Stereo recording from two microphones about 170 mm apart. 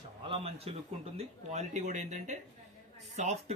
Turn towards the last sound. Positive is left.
turn(degrees=-45)  # may be behind; listen again after turning